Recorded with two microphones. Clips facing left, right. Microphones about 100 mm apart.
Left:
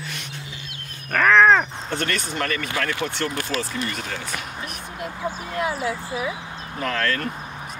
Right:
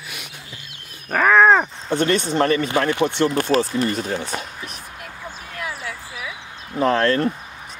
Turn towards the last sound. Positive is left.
turn(degrees=-30)  # may be behind; listen again after turning